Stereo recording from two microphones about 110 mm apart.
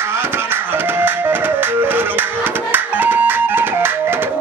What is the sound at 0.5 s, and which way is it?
Music, 20° right (ahead or behind).